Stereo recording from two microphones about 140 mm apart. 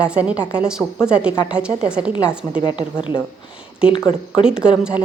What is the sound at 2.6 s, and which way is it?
Speech, 35° left (ahead or behind).